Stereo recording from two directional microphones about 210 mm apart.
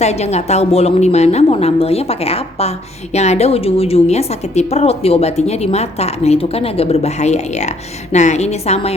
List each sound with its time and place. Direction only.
0.0 s a woman's voice: 30° left (ahead or behind)